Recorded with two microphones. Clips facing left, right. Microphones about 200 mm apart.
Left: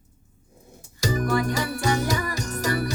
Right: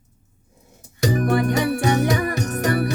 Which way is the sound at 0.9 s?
65° right (ahead or behind).